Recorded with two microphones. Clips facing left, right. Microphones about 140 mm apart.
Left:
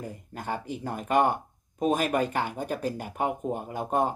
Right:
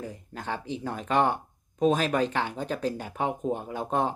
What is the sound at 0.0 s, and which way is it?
Speech, 10° left (ahead or behind).